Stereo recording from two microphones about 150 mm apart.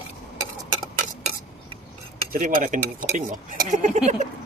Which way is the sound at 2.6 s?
60° right (ahead or behind).